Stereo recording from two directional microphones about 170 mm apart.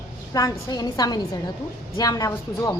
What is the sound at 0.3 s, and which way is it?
A woman's voice, 20° left (ahead or behind).